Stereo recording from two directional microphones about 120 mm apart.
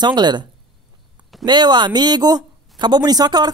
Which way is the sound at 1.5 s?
40° right (ahead or behind).